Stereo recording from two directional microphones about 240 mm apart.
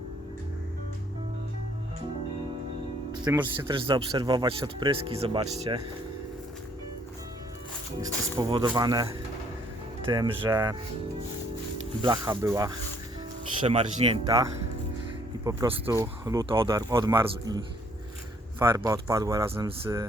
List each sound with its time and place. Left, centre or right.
3.1 s speech: centre
8.0 s speech: centre
10.1 s speech: centre
12.0 s speech: centre
18.6 s speech: centre